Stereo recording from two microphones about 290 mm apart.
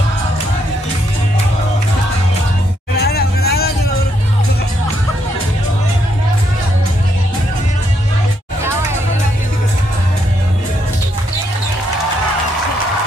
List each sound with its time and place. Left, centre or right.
3.0 s hubbub: left